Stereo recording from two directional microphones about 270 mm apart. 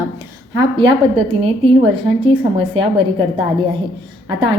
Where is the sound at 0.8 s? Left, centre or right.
Centre.